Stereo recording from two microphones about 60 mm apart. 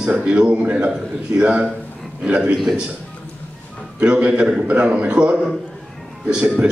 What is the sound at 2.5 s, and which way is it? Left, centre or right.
Speech, centre.